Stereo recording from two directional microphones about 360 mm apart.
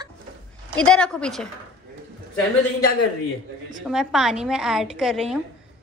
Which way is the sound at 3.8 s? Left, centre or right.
Centre.